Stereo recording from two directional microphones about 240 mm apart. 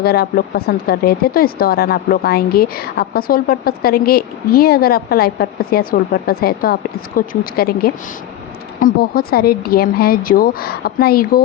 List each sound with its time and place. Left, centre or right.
0.0 s speech: left